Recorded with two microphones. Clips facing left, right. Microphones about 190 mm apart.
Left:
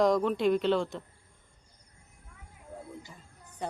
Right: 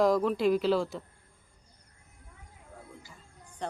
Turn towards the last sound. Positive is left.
turn(degrees=10)  # may be behind; listen again after turning